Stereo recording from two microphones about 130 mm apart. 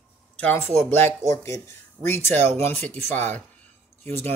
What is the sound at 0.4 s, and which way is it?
Speech, 15° left (ahead or behind).